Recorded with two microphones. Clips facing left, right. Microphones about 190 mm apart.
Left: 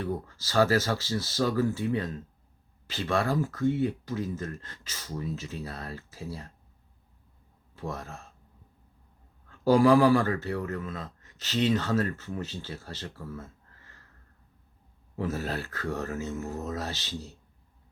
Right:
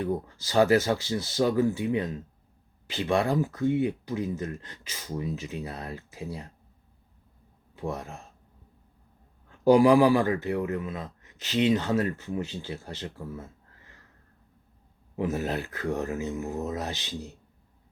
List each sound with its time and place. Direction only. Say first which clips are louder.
0.0 s speech: right 3 dB; 15° right (ahead or behind)
7.8 s speech: right 3 dB; 15° right (ahead or behind)
9.5 s speech: right 2 dB; 15° right (ahead or behind)
15.1 s speech: right 3 dB; 15° right (ahead or behind)